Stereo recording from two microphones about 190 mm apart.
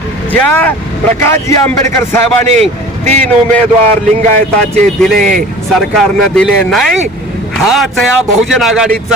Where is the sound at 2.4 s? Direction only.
35° right (ahead or behind).